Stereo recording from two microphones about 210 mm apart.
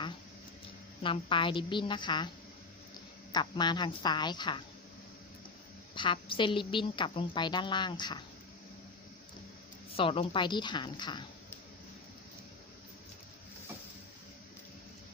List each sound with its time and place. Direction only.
1.0 s a woman's voice: 25° left (ahead or behind)
3.3 s a woman's voice: 20° left (ahead or behind)
5.9 s a woman's voice: 25° left (ahead or behind)
10.0 s a woman's voice: 25° left (ahead or behind)